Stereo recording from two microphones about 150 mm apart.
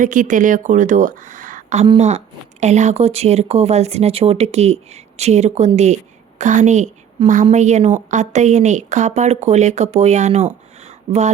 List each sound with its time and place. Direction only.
0.0 s a woman's voice: 60° right (ahead or behind)